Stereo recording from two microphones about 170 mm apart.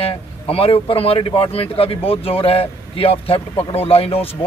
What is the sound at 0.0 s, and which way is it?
Speech, 35° left (ahead or behind).